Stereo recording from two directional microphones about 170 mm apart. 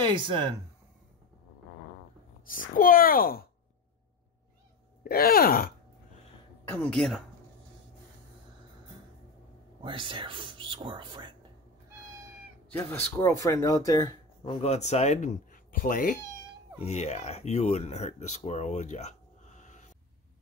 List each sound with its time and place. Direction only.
0.0 s speech: 30° right (ahead or behind)
2.4 s a child's voice: 55° left (ahead or behind)
5.0 s a child's voice: 65° left (ahead or behind)
6.7 s speech: 5° left (ahead or behind)
9.8 s speech: 30° right (ahead or behind)
12.7 s speech: 15° left (ahead or behind)
14.6 s speech: 40° left (ahead or behind)
16.8 s speech: 40° left (ahead or behind)